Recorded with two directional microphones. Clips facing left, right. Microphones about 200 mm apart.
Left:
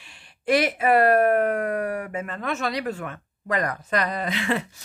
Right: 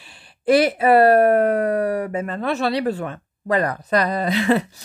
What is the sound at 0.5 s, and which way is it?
Speech, 35° right (ahead or behind).